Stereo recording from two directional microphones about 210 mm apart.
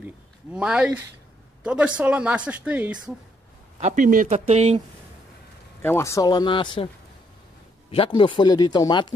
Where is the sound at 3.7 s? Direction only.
35° right (ahead or behind).